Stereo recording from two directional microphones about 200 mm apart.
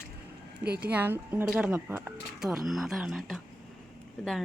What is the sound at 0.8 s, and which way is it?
A woman's voice, 5° right (ahead or behind).